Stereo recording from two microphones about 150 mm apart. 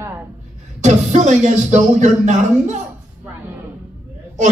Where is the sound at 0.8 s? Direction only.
50° right (ahead or behind).